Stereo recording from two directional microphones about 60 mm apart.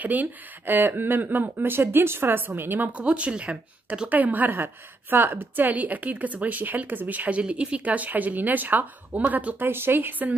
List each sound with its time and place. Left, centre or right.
0.0 s speech: right
2.9 s a woman's voice: right
4.1 s a woman's voice: right
9.6 s speech: right